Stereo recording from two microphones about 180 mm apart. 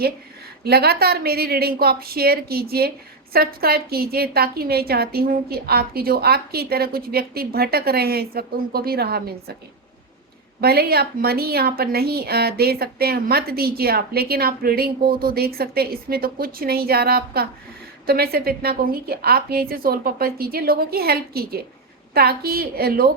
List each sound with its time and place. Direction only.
0.6 s a woman's voice: 60° right (ahead or behind)
10.6 s a woman's voice: 60° right (ahead or behind)